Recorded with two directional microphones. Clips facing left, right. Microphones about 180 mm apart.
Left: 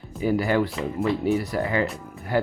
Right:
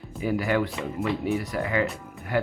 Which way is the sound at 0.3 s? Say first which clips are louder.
Left 3 dB; 35° left (ahead or behind).